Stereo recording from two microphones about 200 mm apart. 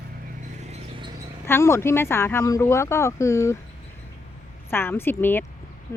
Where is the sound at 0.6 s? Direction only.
30° right (ahead or behind).